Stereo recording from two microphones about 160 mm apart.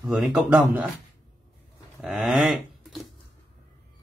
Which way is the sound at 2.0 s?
Centre (ahead or behind).